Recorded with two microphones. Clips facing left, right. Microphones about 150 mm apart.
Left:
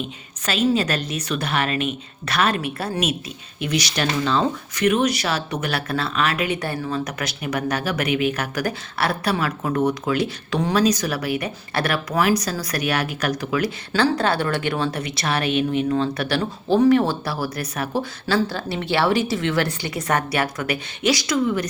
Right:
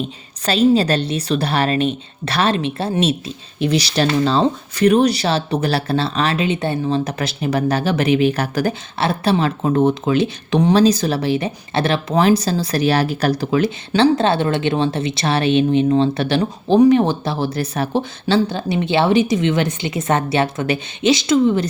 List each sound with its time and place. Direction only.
0.0 s a woman's voice: 35° right (ahead or behind)